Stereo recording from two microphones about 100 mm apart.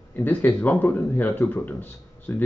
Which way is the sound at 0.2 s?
20° left (ahead or behind).